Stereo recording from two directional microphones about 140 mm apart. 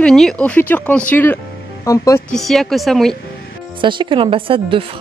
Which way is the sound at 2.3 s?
Centre (ahead or behind).